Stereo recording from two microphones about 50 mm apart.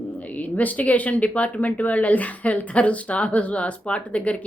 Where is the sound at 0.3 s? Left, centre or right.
Left.